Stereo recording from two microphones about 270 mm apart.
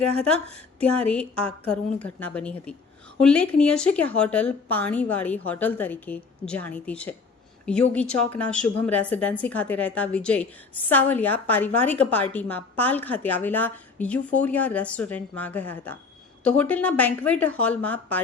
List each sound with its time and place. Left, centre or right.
0.8 s a woman's voice: centre